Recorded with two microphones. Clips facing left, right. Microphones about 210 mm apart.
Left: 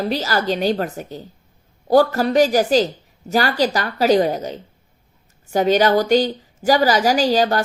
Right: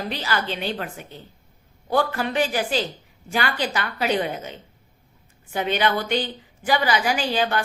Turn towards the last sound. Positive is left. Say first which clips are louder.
# left 6 dB
turn(degrees=40)  # may be behind; listen again after turning